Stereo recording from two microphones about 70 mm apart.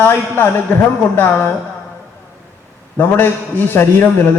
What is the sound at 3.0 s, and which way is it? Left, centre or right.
A man's voice, left.